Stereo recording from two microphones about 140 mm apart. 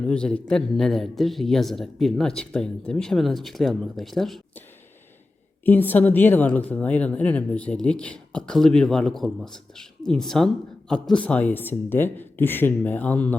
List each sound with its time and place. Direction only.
0.1 s speech: 5° left (ahead or behind)
5.6 s speech: 15° left (ahead or behind)